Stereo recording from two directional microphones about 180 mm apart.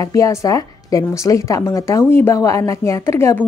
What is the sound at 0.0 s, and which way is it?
A woman's voice, 20° left (ahead or behind).